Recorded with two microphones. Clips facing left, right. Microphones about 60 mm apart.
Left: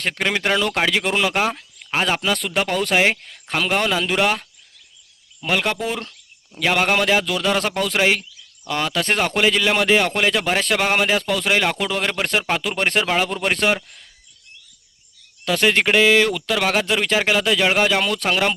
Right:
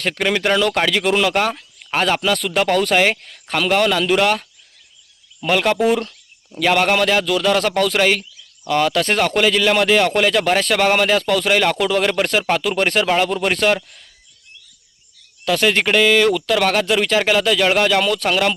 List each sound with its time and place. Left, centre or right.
0.0 s speech: centre
5.5 s speech: centre
6.7 s speech: centre
15.4 s speech: centre